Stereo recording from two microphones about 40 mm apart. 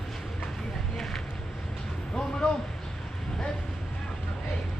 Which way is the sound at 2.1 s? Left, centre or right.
Centre.